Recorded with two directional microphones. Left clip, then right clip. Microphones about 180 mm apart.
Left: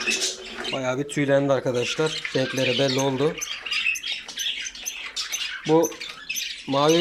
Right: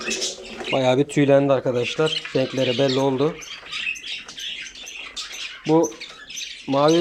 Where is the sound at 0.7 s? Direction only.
20° right (ahead or behind).